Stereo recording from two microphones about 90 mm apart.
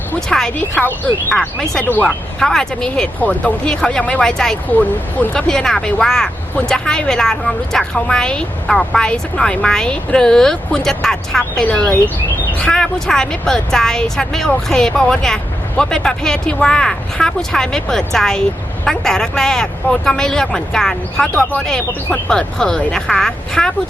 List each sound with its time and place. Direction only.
0.3 s speech: 5° left (ahead or behind)
1.4 s speech: 5° left (ahead or behind)